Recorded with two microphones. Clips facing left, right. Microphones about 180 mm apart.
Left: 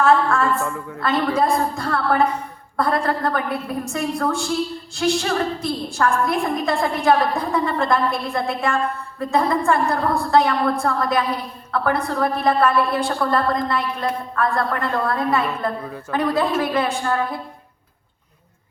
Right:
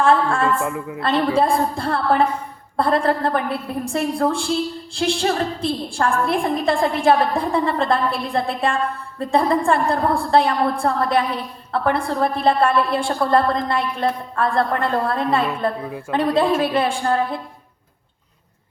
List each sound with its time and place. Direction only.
0.0 s a woman's voice: 30° right (ahead or behind)
0.4 s a man's voice: 15° right (ahead or behind)
1.4 s a woman's voice: 30° right (ahead or behind)